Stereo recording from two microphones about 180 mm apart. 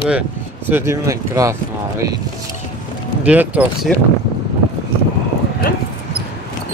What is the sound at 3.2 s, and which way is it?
Speech, 10° right (ahead or behind).